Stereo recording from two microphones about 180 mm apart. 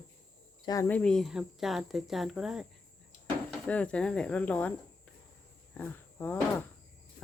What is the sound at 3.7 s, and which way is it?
Speech, 5° left (ahead or behind).